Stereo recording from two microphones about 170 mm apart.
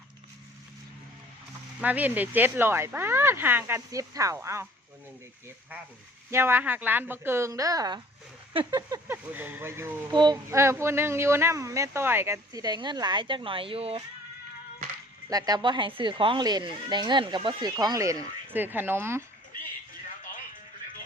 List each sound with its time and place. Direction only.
1.8 s speech: 10° right (ahead or behind)
6.3 s speech: 15° right (ahead or behind)
10.1 s a woman's voice: 25° right (ahead or behind)
10.5 s speech: 15° right (ahead or behind); by 14.0 s 35° right (ahead or behind)
15.3 s a woman's voice: 20° right (ahead or behind)